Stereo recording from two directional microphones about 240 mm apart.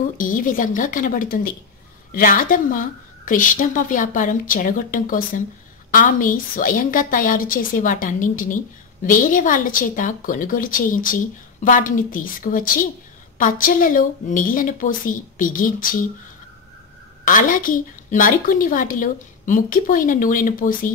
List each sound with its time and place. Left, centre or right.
0.0 s a woman's voice: left
17.2 s a woman's voice: left